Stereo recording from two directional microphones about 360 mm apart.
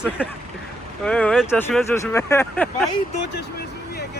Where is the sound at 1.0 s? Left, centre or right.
Centre.